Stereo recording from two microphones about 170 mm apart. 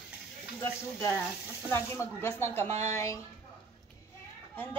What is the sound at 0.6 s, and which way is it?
Speech, 15° left (ahead or behind).